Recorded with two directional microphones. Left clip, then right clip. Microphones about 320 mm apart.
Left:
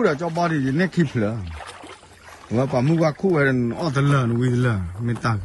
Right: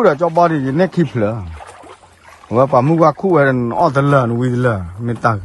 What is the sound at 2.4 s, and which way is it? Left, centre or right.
Speech, centre.